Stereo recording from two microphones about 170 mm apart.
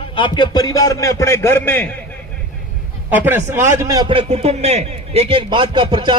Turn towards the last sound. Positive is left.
turn(degrees=-30)  # may be behind; listen again after turning